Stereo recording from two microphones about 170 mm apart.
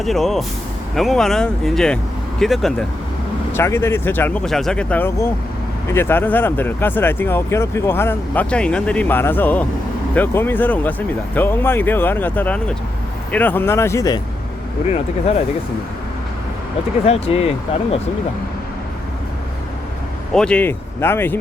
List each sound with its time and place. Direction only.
0.0 s speech: centre (ahead or behind)
3.5 s speech: 15° left (ahead or behind)
4.4 s speech: centre (ahead or behind); by 14.2 s 20° left (ahead or behind)
17.1 s speech: 35° left (ahead or behind)
20.3 s speech: 5° left (ahead or behind)